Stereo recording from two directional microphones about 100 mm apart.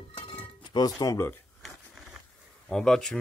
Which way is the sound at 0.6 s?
45° left (ahead or behind).